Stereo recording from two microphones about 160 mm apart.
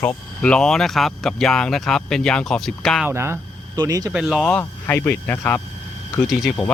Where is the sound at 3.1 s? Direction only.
15° right (ahead or behind).